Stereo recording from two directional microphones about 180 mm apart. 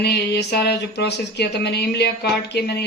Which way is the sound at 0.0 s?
70° left (ahead or behind).